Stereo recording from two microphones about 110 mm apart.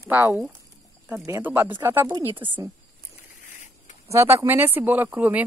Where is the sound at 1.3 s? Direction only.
25° right (ahead or behind).